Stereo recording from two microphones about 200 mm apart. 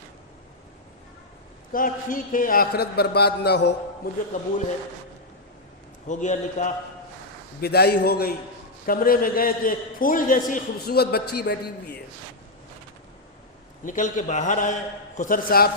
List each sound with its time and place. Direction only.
1.7 s a man's voice: 45° left (ahead or behind)
4.3 s a man's voice: 40° left (ahead or behind)
6.1 s a man's voice: 35° left (ahead or behind)
7.6 s a man's voice: 50° left (ahead or behind)
13.8 s a man's voice: 40° left (ahead or behind)